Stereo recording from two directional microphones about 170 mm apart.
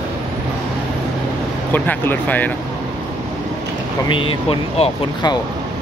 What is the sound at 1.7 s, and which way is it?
Speech, 10° left (ahead or behind).